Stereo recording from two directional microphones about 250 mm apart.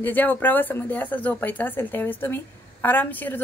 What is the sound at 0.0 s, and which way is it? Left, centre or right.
Speech, centre.